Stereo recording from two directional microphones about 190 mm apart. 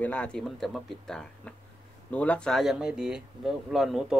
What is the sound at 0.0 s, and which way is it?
Speech, 5° left (ahead or behind).